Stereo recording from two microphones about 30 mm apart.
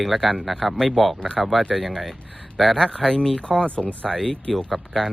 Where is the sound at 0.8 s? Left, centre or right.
Centre.